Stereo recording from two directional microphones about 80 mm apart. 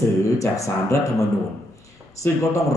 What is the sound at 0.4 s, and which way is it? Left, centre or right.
Speech, left.